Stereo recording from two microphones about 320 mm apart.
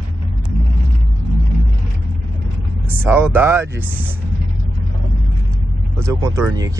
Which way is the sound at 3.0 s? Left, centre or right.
Centre.